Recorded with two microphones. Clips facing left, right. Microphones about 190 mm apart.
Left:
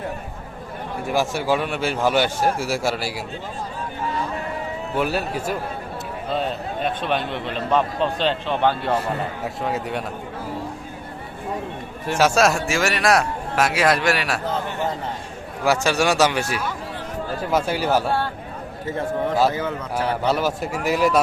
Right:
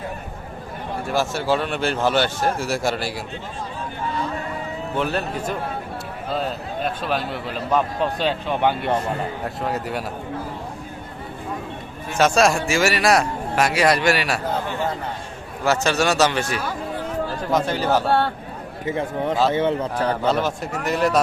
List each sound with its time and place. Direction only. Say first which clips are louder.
1.0 s speech: left 1 dB; 15° left (ahead or behind)
4.9 s a man's voice: left 1 dB; 10° left (ahead or behind); by 9.0 s 15° right (ahead or behind)
9.4 s a man's voice: even; centre (ahead or behind)
12.1 s a man's voice: right 1 dB; 5° left (ahead or behind)
15.6 s speech: even; 10° left (ahead or behind)
18.9 s a man's voice: even; 15° right (ahead or behind)
19.5 s a man's voice: right 4 dB; 30° right (ahead or behind)
20.2 s a man's voice: even; 5° left (ahead or behind)